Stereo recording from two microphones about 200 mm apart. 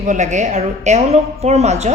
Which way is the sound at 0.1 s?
35° right (ahead or behind).